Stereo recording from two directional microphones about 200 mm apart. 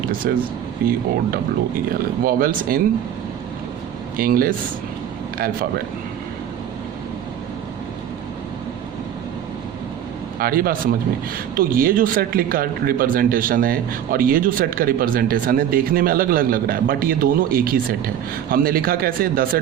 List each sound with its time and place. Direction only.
0.2 s speech: 50° right (ahead or behind)
2.2 s speech: 45° right (ahead or behind)
4.2 s speech: 45° right (ahead or behind)
10.3 s a man's voice: 45° right (ahead or behind)